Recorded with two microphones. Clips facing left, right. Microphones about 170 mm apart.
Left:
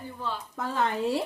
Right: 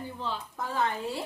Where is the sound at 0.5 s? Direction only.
70° left (ahead or behind).